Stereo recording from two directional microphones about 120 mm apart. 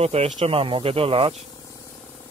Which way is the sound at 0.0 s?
60° right (ahead or behind).